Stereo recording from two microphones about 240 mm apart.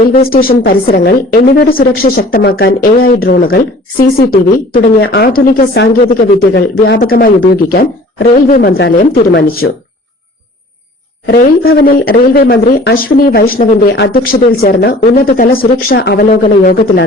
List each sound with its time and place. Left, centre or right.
0.0 s speech: left
11.3 s speech: left